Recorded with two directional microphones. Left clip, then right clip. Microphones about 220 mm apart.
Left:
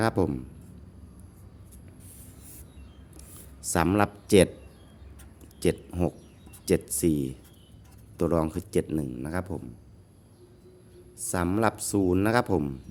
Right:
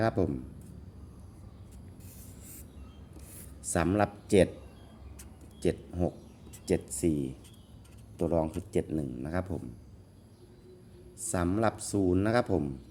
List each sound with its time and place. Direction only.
0.0 s speech: 25° left (ahead or behind)
3.7 s speech: 20° left (ahead or behind)
5.5 s speech: 25° left (ahead or behind)
11.2 s speech: 15° left (ahead or behind)